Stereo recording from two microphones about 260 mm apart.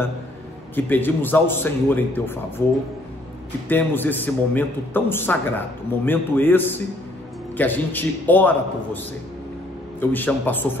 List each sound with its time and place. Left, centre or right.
0.7 s a man's voice: centre
3.6 s a man's voice: centre